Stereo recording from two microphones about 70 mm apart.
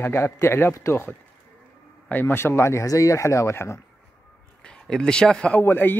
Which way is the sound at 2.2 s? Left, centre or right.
Left.